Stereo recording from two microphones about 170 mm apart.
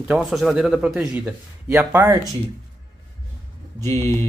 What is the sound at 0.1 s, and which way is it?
Speech, centre (ahead or behind).